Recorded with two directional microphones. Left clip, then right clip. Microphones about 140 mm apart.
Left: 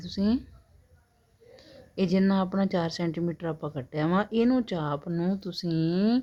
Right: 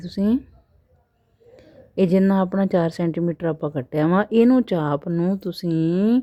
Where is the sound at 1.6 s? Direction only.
50° right (ahead or behind).